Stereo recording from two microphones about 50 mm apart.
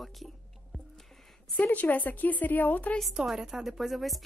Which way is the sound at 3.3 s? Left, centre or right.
Centre.